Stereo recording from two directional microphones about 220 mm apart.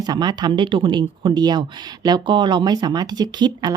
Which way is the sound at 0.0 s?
20° right (ahead or behind).